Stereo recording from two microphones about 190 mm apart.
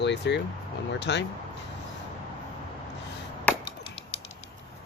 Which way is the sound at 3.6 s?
25° left (ahead or behind).